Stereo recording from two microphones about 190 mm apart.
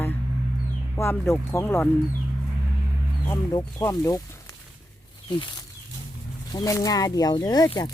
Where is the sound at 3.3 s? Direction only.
15° left (ahead or behind).